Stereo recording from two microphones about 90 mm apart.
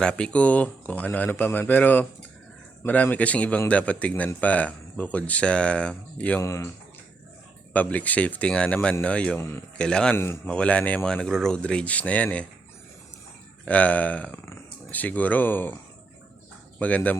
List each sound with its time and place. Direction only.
0.0 s speech: 10° left (ahead or behind)
6.4 s speech: 35° left (ahead or behind)
7.7 s speech: 15° left (ahead or behind)
10.2 s a man's voice: 25° left (ahead or behind)
10.5 s speech: 15° left (ahead or behind)
13.7 s speech: 15° left (ahead or behind)
16.8 s speech: 15° left (ahead or behind)